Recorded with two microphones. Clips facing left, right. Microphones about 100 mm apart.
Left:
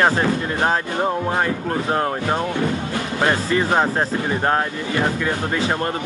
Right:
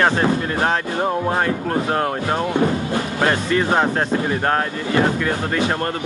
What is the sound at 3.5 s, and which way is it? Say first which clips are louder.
Speech: right 1 dB; centre (ahead or behind).